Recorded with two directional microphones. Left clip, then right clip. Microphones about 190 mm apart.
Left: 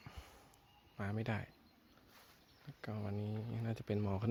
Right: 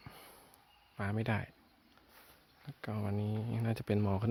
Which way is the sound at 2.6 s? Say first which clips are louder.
Right 5 dB; 10° right (ahead or behind).